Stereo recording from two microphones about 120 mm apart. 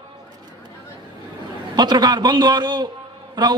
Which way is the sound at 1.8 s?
35° right (ahead or behind).